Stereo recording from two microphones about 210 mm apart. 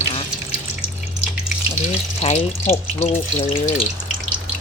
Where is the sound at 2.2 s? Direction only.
30° left (ahead or behind).